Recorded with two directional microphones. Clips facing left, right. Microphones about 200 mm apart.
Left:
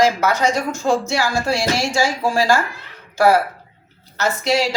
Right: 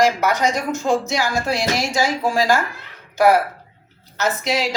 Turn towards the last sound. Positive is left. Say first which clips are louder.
# left 2 dB
turn(degrees=-20)  # may be behind; listen again after turning